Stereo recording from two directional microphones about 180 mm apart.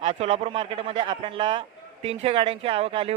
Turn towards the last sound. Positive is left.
turn(degrees=-30)  # may be behind; listen again after turning